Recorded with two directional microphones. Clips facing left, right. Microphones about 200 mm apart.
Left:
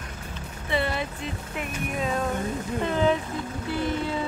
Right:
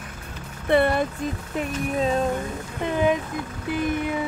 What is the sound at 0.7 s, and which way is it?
Speech, 50° right (ahead or behind).